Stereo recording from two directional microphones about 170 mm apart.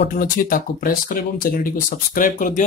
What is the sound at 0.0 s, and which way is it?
Speech, 55° left (ahead or behind).